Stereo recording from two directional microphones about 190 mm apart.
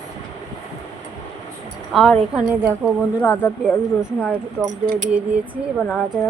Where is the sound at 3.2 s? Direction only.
10° left (ahead or behind).